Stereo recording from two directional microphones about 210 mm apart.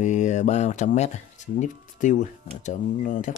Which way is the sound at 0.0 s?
35° left (ahead or behind).